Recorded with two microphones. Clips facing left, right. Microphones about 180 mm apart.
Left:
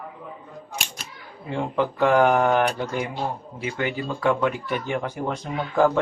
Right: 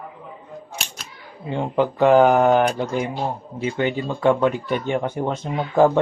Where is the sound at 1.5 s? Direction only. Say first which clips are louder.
Right 3 dB; 30° right (ahead or behind).